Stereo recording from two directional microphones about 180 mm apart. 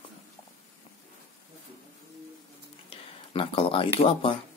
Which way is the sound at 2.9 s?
30° left (ahead or behind).